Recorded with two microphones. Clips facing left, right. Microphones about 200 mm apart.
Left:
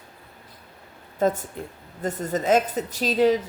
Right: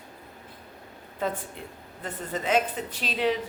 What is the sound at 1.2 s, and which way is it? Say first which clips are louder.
A woman's voice: left 8 dB; 45° left (ahead or behind).